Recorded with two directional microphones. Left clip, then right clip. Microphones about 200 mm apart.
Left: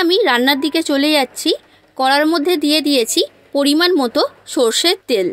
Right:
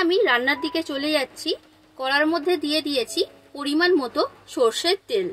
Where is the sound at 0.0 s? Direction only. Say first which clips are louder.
Left 6 dB; 45° left (ahead or behind).